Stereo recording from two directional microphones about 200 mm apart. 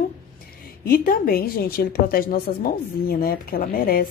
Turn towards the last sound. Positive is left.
turn(degrees=45)  # may be behind; listen again after turning